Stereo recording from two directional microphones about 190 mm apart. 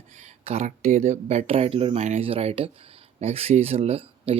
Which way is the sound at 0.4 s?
35° right (ahead or behind).